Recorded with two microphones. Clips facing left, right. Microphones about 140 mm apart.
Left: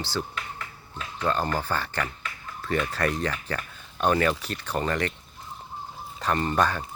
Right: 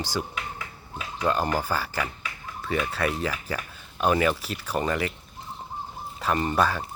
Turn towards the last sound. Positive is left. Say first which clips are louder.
# even
turn(degrees=-5)  # may be behind; listen again after turning